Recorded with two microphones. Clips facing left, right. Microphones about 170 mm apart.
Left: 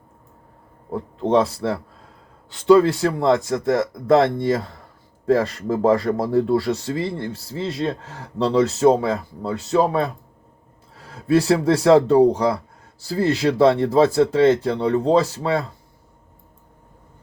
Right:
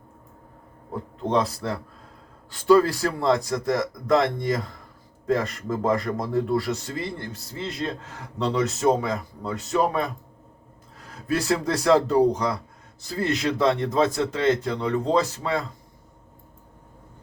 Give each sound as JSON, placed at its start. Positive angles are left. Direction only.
{"t": 0.9, "sound": "speech", "side_deg": 30}